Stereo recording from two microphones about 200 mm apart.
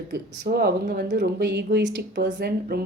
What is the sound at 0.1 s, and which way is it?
Speech, 50° right (ahead or behind).